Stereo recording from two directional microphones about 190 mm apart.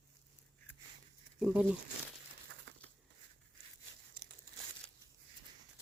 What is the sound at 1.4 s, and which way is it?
Speech, 5° right (ahead or behind).